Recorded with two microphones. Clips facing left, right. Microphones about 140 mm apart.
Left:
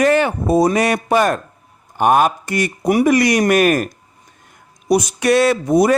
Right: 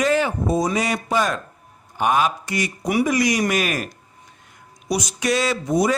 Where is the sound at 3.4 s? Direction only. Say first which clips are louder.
Left 8 dB; 50° left (ahead or behind).